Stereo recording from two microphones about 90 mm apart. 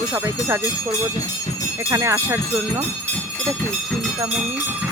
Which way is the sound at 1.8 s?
35° right (ahead or behind).